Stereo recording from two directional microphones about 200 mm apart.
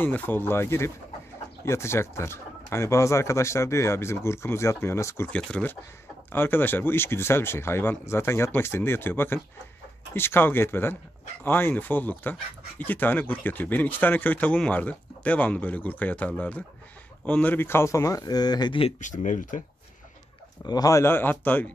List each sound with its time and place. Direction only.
0.0 s speech: 10° left (ahead or behind); by 19.6 s 40° left (ahead or behind)
20.6 s speech: 20° left (ahead or behind)